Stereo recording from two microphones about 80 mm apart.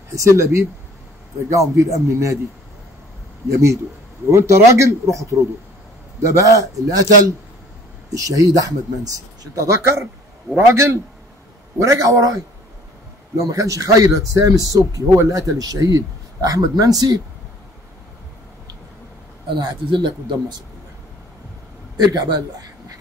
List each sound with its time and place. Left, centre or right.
0.1 s speech: right
4.3 s speech: right
13.4 s speech: right
19.5 s speech: right
22.0 s speech: right